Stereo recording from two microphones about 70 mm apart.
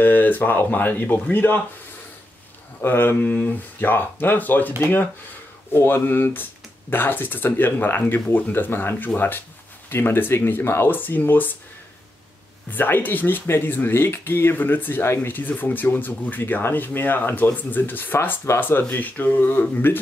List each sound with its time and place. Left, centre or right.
0.0 s speech: left
2.8 s speech: left
12.7 s speech: left